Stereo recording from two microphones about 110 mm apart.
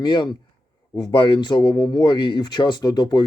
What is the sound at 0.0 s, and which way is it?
Speech, 45° left (ahead or behind).